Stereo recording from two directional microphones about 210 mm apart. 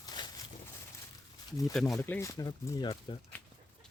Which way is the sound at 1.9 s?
10° left (ahead or behind).